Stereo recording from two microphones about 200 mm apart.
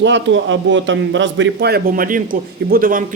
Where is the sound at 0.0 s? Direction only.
65° right (ahead or behind).